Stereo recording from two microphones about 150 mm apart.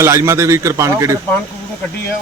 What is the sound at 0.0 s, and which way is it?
A man's voice, 20° right (ahead or behind).